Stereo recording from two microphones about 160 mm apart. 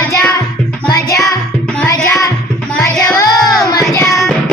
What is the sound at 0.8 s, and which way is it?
Music, 20° left (ahead or behind).